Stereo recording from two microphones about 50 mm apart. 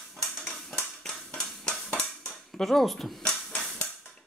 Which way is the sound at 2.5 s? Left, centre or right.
Centre.